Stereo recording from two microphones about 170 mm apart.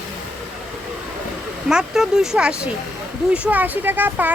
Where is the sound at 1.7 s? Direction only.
5° right (ahead or behind).